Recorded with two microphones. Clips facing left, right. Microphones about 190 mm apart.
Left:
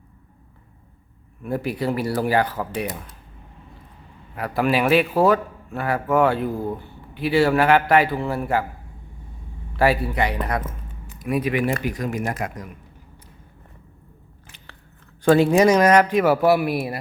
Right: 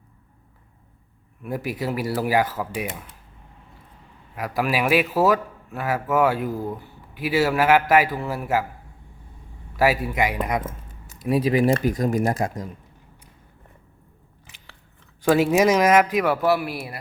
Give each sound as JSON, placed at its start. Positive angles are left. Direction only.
{"t": 1.5, "sound": "speech", "side_deg": -10}
{"t": 4.4, "sound": "a man's voice", "side_deg": -5}
{"t": 9.7, "sound": "speech", "side_deg": -5}
{"t": 11.2, "sound": "speech", "side_deg": -30}
{"t": 15.2, "sound": "a man's voice", "side_deg": -5}